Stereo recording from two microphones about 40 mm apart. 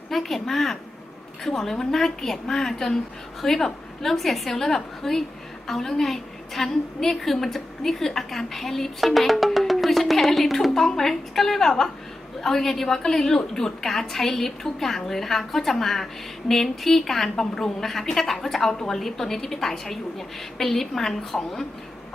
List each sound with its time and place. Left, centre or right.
0.1 s a woman's voice: centre